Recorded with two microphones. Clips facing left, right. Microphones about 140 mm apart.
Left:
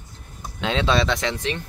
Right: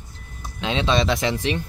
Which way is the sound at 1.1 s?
10° right (ahead or behind).